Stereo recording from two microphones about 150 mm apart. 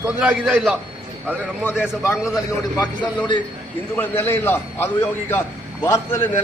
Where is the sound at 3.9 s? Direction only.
15° left (ahead or behind).